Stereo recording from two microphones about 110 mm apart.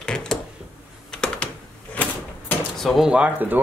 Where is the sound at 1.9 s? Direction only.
15° left (ahead or behind).